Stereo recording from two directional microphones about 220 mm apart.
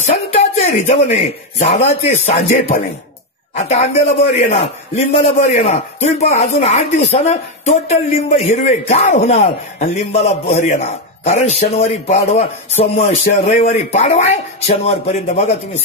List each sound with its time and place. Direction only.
0.1 s speech: 25° left (ahead or behind)